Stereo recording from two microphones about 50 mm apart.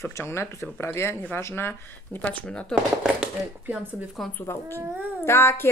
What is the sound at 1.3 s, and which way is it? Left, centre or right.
Speech, left.